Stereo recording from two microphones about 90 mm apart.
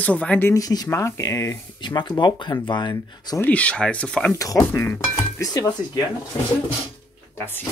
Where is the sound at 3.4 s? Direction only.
15° left (ahead or behind).